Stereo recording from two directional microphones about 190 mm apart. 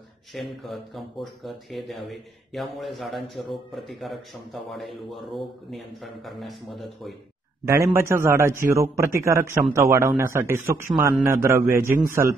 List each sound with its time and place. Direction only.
0.3 s speech: centre (ahead or behind)
7.6 s a man's voice: 15° right (ahead or behind)